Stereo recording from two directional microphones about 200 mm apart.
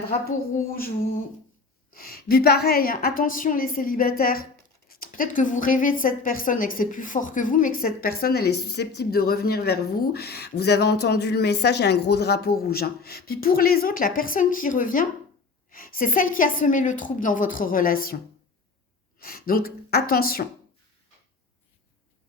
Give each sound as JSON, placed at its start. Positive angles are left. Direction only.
{"t": 1.9, "sound": "speech", "side_deg": 50}
{"t": 19.2, "sound": "speech", "side_deg": 50}